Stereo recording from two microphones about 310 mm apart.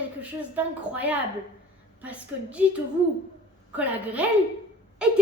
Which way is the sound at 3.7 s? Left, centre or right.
Centre.